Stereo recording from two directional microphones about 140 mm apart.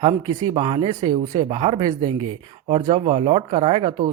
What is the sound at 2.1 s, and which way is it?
Speech, 40° right (ahead or behind).